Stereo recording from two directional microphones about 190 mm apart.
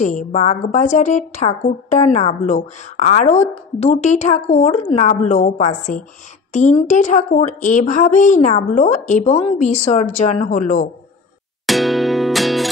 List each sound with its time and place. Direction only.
0.0 s a woman's voice: 40° left (ahead or behind)
11.6 s music: centre (ahead or behind)